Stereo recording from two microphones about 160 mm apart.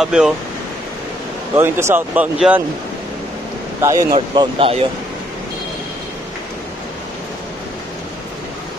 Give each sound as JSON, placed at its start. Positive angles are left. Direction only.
{"t": 0.0, "sound": "speech", "side_deg": -5}
{"t": 1.5, "sound": "speech", "side_deg": -15}
{"t": 3.8, "sound": "speech", "side_deg": -25}